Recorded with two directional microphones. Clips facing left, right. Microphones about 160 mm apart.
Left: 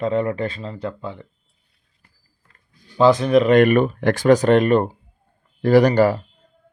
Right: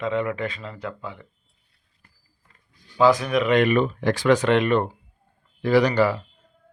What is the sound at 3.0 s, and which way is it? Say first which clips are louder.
Speech: left 4 dB; 25° left (ahead or behind).